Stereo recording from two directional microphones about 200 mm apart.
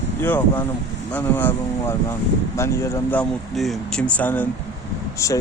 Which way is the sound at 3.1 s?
5° left (ahead or behind).